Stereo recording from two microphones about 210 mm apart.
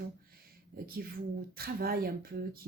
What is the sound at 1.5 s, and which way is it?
Speech, 45° right (ahead or behind).